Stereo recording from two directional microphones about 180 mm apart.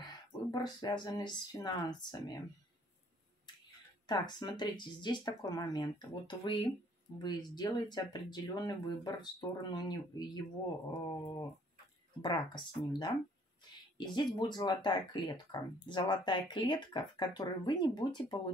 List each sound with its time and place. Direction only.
0.0 s speech: 25° left (ahead or behind)
4.1 s speech: 25° left (ahead or behind)